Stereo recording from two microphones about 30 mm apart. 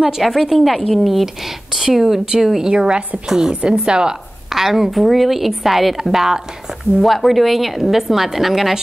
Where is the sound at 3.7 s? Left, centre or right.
Right.